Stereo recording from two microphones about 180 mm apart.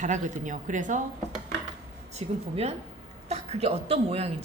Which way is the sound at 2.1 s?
35° right (ahead or behind).